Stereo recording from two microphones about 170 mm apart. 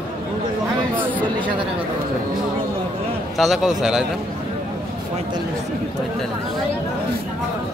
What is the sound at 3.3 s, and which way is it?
Speech, centre (ahead or behind).